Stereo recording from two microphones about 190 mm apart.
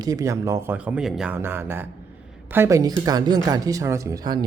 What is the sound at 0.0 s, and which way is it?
A man's voice, 20° right (ahead or behind).